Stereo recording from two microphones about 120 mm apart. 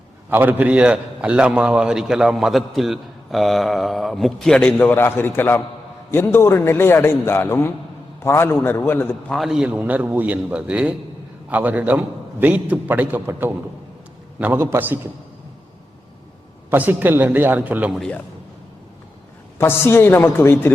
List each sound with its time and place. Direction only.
0.3 s a man's voice: 15° right (ahead or behind); by 9.1 s 20° left (ahead or behind)
9.3 s a man's voice: centre (ahead or behind); by 14.9 s 20° right (ahead or behind)
16.6 s a man's voice: 15° right (ahead or behind)
19.5 s a man's voice: 20° left (ahead or behind)